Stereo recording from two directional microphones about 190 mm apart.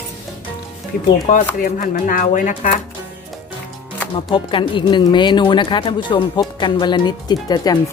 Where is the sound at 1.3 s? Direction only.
45° left (ahead or behind).